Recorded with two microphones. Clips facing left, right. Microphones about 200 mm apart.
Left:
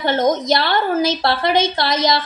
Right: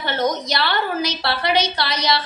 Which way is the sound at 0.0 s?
50° left (ahead or behind).